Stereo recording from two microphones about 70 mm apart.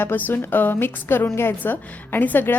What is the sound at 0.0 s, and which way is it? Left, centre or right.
A woman's voice, left.